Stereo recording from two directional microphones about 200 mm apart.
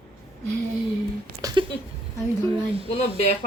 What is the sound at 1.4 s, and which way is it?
Speech, 20° right (ahead or behind).